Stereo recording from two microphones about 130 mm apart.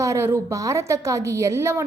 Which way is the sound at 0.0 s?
20° right (ahead or behind).